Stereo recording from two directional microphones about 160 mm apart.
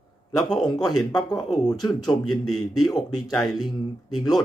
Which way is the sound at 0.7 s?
25° left (ahead or behind).